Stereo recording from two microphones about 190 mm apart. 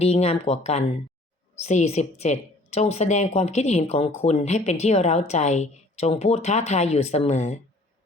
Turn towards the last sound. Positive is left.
turn(degrees=35)  # may be behind; listen again after turning